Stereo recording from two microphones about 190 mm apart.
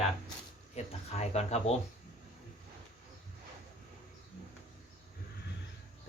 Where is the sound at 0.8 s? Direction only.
35° left (ahead or behind).